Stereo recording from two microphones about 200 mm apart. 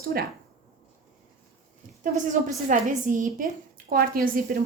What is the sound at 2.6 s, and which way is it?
A woman's voice, 40° right (ahead or behind).